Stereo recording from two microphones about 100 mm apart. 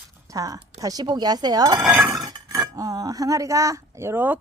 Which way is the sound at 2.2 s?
35° right (ahead or behind).